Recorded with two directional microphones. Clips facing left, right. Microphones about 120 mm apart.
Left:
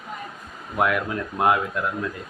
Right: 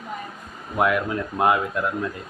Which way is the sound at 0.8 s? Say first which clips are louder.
Right 1 dB; centre (ahead or behind).